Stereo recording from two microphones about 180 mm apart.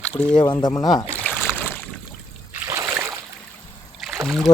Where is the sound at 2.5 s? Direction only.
15° right (ahead or behind).